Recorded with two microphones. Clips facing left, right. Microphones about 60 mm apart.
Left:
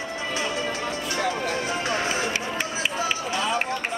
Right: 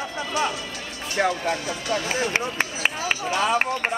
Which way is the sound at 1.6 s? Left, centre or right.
Left.